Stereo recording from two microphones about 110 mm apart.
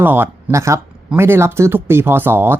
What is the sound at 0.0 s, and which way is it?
Speech, 20° right (ahead or behind).